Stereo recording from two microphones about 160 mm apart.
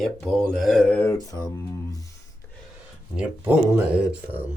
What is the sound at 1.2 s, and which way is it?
Speech, 25° left (ahead or behind).